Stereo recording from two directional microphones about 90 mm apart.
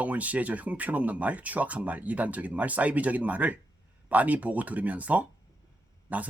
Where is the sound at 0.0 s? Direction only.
15° right (ahead or behind).